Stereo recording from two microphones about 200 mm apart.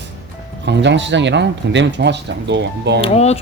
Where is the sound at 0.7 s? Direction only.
60° right (ahead or behind).